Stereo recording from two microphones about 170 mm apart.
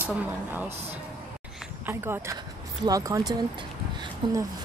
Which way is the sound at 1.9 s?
15° right (ahead or behind).